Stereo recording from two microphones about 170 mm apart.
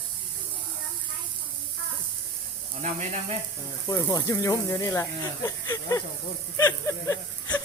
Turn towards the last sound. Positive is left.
turn(degrees=20)  # may be behind; listen again after turning